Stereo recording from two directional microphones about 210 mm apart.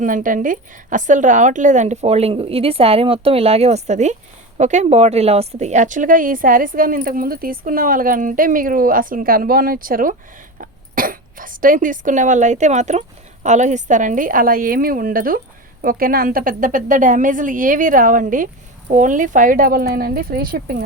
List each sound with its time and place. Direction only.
0.0 s a woman's voice: 40° right (ahead or behind)